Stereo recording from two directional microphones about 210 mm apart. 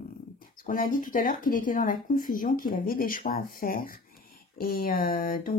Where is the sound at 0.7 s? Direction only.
40° left (ahead or behind).